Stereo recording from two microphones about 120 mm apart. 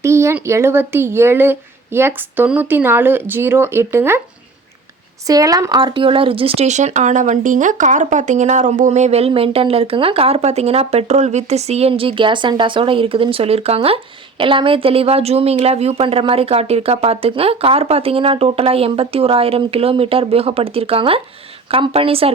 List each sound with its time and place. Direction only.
0.0 s a sound: 25° right (ahead or behind)
0.4 s speech: 20° right (ahead or behind)
5.2 s speech: 30° right (ahead or behind); by 22.3 s 50° right (ahead or behind)